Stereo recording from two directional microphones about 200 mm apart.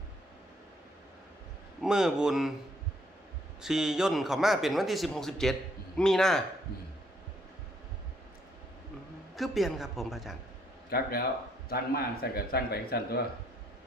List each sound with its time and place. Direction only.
1.8 s a man's voice: 5° right (ahead or behind)
3.6 s a man's voice: centre (ahead or behind)
9.3 s a man's voice: centre (ahead or behind)
10.8 s speech: 50° left (ahead or behind)